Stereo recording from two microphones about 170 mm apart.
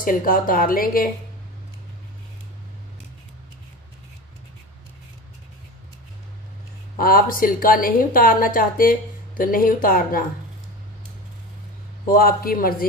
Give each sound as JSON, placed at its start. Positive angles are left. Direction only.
{"t": 0.0, "sound": "speech", "side_deg": 55}
{"t": 7.0, "sound": "speech", "side_deg": 55}
{"t": 12.1, "sound": "speech", "side_deg": 60}